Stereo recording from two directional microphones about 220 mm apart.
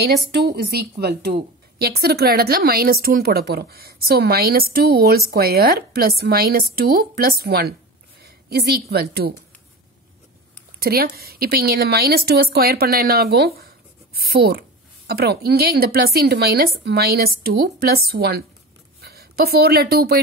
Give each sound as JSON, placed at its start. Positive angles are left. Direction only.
{"t": 0.4, "sound": "a woman's voice", "side_deg": -45}
{"t": 10.8, "sound": "a woman's voice", "side_deg": -45}